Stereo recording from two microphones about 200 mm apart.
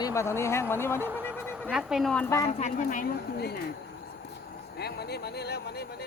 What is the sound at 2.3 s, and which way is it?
Speech, 15° left (ahead or behind).